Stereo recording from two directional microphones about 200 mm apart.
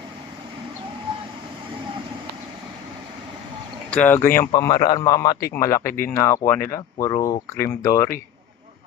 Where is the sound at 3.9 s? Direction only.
10° left (ahead or behind).